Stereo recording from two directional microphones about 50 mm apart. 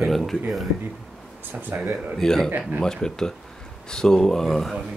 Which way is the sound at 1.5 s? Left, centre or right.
Right.